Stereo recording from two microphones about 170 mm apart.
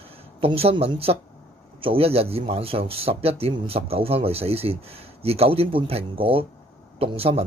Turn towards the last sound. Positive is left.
turn(degrees=-35)  # may be behind; listen again after turning